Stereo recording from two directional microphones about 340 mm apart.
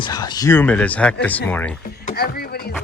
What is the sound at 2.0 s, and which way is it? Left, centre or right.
Speech, left.